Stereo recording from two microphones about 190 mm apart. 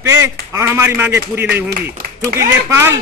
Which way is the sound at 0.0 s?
15° right (ahead or behind).